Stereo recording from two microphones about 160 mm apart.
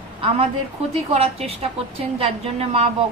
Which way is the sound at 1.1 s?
40° right (ahead or behind).